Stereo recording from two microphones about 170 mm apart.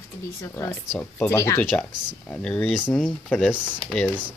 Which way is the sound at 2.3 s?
5° left (ahead or behind).